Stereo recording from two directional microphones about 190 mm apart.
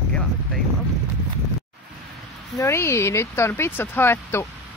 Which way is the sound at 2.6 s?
15° left (ahead or behind).